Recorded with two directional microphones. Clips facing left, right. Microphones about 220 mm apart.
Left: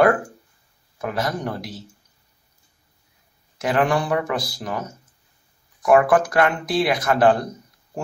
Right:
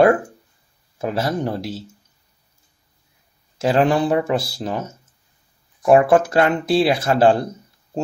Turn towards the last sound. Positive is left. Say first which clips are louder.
# right 2 dB
turn(degrees=-25)  # may be behind; listen again after turning